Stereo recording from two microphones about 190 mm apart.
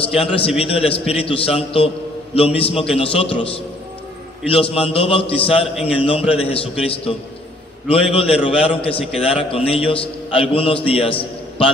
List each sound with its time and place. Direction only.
0.0 s a man's voice: 30° left (ahead or behind)